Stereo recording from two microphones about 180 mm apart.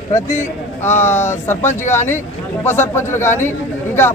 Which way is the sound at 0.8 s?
15° left (ahead or behind).